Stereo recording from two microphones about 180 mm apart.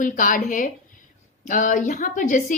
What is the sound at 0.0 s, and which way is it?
A woman's voice, 45° left (ahead or behind).